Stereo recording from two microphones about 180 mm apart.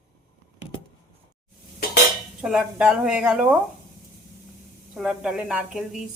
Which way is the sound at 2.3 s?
5° right (ahead or behind).